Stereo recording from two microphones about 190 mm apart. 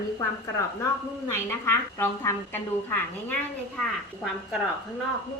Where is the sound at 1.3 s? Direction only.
15° left (ahead or behind).